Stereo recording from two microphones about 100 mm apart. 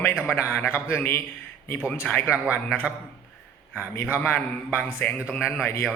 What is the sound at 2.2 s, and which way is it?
Speech, 15° right (ahead or behind).